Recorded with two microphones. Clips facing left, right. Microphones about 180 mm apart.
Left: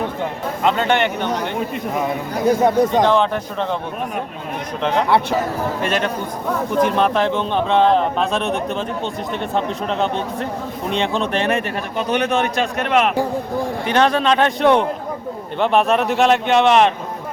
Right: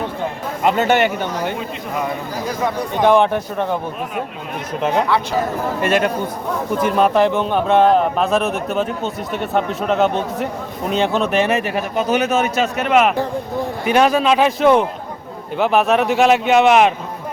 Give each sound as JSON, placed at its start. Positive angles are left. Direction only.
{"t": 0.6, "sound": "speech", "side_deg": -5}
{"t": 2.6, "sound": "speech", "side_deg": 45}
{"t": 3.1, "sound": "speech", "side_deg": -10}
{"t": 4.8, "sound": "speech", "side_deg": -5}
{"t": 6.7, "sound": "speech", "side_deg": -5}